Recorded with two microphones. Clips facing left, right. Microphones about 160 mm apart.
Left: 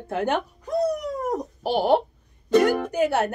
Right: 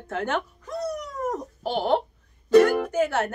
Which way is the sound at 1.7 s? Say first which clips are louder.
Left 4 dB; 10° left (ahead or behind).